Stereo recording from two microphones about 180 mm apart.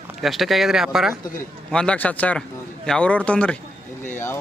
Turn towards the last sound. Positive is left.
turn(degrees=15)  # may be behind; listen again after turning